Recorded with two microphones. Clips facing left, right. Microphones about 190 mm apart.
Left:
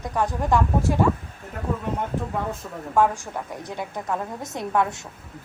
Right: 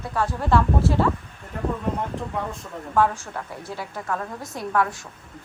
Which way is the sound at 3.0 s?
15° left (ahead or behind).